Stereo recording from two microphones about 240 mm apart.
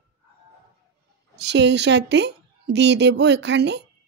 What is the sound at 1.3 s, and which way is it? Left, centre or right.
A woman's voice, right.